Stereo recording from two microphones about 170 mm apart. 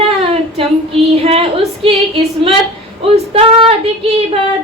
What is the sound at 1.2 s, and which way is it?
Female singing, 35° right (ahead or behind).